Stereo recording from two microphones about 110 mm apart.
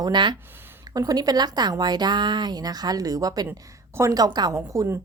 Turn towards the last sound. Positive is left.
turn(degrees=-25)  # may be behind; listen again after turning